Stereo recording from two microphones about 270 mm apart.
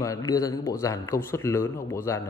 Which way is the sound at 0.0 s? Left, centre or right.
Centre.